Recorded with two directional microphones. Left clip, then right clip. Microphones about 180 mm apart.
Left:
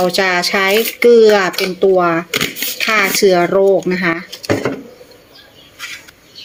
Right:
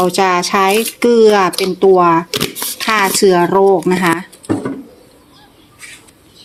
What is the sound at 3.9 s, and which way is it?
Speech, 50° right (ahead or behind).